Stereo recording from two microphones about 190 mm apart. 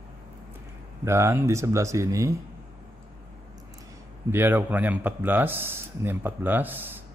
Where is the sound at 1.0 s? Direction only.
15° right (ahead or behind).